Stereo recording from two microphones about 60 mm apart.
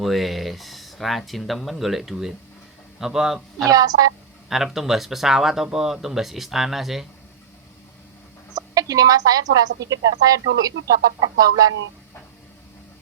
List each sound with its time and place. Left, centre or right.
0.0 s a man's voice: centre
3.7 s a woman's voice: right
4.4 s speech: centre
8.5 s a woman's voice: right